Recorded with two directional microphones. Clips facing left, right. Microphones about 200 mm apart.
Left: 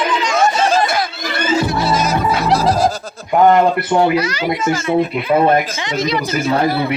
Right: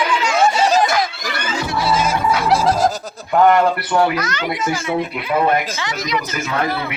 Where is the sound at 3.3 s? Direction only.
20° left (ahead or behind).